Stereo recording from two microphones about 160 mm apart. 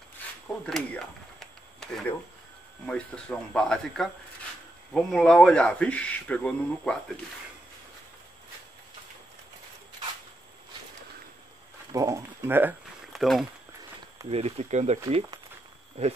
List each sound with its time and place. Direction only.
0.7 s speech: 5° left (ahead or behind)
11.9 s speech: 20° right (ahead or behind)
13.1 s speech: centre (ahead or behind)
14.3 s speech: 45° right (ahead or behind)